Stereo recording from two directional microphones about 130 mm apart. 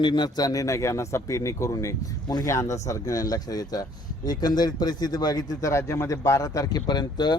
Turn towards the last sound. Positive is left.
turn(degrees=35)  # may be behind; listen again after turning